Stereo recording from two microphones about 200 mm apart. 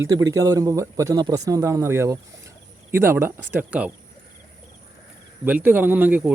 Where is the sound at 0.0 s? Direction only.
15° right (ahead or behind).